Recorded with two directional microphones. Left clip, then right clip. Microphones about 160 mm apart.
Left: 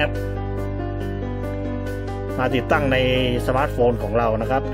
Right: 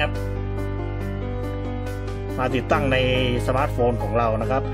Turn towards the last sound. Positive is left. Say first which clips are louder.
# left 2 dB
turn(degrees=20)  # may be behind; listen again after turning